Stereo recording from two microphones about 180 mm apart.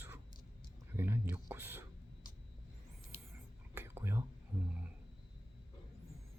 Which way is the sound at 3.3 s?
15° right (ahead or behind).